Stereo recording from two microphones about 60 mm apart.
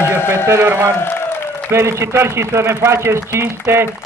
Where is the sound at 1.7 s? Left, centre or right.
Right.